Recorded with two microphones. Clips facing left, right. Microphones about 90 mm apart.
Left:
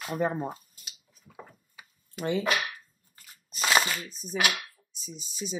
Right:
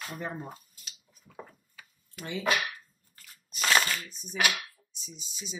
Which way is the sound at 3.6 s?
10° left (ahead or behind).